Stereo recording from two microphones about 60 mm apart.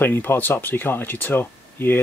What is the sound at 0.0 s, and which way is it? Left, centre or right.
Speech, left.